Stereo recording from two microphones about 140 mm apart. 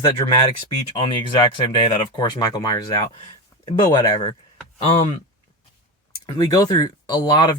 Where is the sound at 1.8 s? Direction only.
30° left (ahead or behind).